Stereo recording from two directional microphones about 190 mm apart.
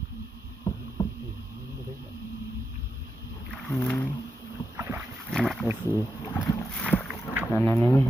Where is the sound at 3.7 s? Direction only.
15° left (ahead or behind).